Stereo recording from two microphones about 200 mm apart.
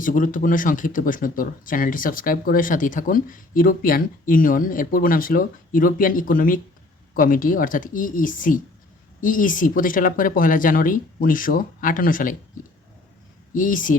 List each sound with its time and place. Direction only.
0.0 s speech: 40° left (ahead or behind)
13.6 s speech: 40° left (ahead or behind)